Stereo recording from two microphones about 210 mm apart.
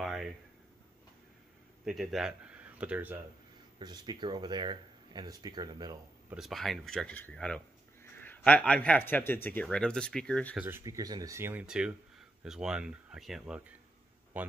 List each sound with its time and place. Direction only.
0.0 s a sound: centre (ahead or behind)
1.9 s speech: centre (ahead or behind)
3.8 s speech: 20° right (ahead or behind)
6.3 s speech: centre (ahead or behind)
10.5 s speech: 10° right (ahead or behind)